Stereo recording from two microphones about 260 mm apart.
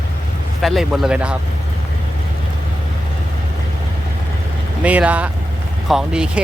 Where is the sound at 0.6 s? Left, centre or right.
Centre.